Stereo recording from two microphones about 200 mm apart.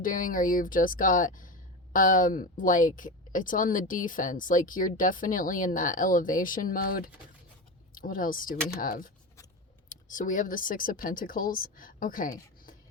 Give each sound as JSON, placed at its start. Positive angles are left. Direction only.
{"t": 0.0, "sound": "speech", "side_deg": 45}